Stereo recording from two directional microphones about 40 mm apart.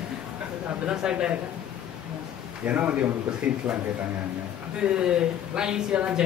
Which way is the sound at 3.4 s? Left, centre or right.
Right.